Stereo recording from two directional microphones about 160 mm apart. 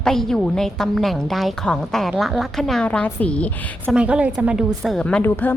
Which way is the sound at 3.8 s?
5° right (ahead or behind).